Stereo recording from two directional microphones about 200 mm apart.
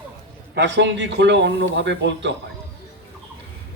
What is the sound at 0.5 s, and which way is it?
A man's voice, 65° right (ahead or behind).